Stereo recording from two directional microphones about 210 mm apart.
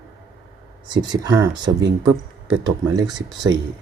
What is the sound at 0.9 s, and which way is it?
Speech, 20° right (ahead or behind).